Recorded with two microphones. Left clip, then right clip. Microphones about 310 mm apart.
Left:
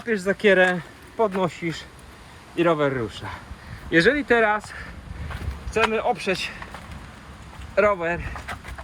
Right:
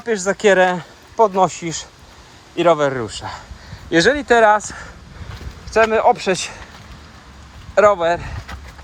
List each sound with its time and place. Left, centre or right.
0.0 s speech: centre
5.7 s speech: centre
7.8 s speech: centre